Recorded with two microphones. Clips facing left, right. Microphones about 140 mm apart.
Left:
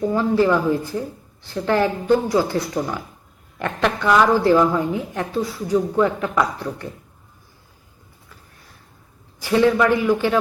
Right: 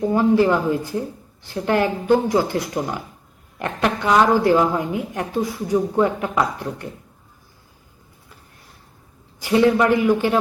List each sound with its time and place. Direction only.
0.0 s a woman's voice: 15° right (ahead or behind)
9.4 s a woman's voice: 15° right (ahead or behind)